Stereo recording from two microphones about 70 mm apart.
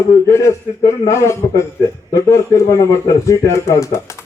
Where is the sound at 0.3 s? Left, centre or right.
Left.